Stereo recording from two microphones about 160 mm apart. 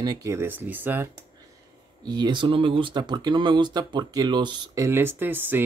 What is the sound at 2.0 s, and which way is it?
Speech, 25° right (ahead or behind).